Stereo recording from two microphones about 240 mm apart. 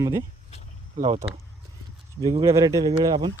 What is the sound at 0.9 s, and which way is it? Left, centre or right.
Speech, right.